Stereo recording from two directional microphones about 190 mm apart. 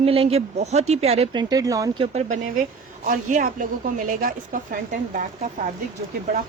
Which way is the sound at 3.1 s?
45° right (ahead or behind).